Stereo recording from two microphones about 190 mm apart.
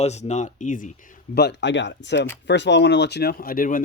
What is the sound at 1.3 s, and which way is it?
Speech, 65° left (ahead or behind).